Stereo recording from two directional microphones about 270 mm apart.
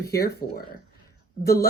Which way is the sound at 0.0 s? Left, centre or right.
Left.